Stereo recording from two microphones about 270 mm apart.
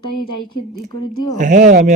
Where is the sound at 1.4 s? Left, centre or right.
Right.